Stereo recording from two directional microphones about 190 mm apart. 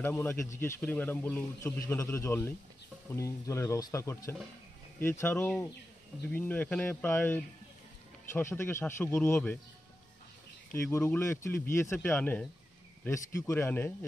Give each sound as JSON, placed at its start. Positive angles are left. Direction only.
{"t": 0.0, "sound": "speech", "side_deg": 10}
{"t": 10.7, "sound": "speech", "side_deg": 15}